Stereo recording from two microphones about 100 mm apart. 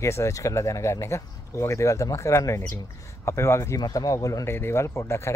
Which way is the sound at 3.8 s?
40° left (ahead or behind).